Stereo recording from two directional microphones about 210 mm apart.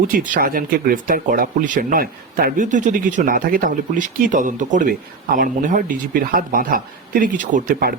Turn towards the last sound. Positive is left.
turn(degrees=-40)  # may be behind; listen again after turning